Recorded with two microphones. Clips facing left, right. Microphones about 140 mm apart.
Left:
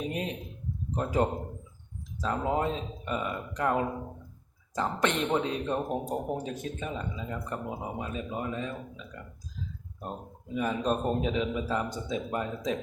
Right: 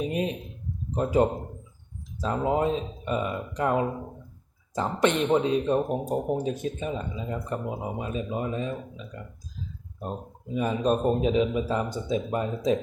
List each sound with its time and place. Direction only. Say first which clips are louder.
0.1 s a sound: right 5 dB; 20° right (ahead or behind)
0.9 s speech: right 5 dB; 15° right (ahead or behind)
6.4 s speech: right 6 dB; 20° right (ahead or behind)
10.5 s speech: right 4 dB; 20° right (ahead or behind)